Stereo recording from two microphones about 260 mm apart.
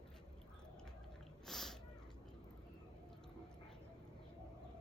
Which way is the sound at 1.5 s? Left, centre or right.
Centre.